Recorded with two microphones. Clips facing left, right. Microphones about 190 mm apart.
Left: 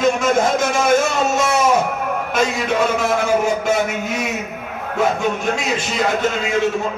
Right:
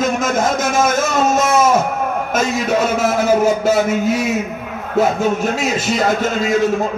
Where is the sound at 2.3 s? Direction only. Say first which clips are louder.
Right 2 dB; 40° right (ahead or behind).